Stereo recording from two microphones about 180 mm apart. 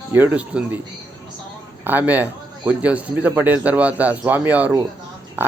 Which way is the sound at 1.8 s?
10° right (ahead or behind).